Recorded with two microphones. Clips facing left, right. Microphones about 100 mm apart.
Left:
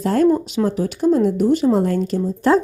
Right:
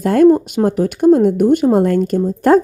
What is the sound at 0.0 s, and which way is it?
Speech, 60° right (ahead or behind).